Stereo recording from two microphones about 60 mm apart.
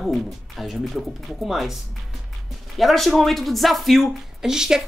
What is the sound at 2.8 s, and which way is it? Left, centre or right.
Speech, centre.